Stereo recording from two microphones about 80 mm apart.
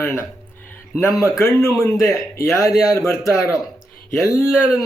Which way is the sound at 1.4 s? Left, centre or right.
Left.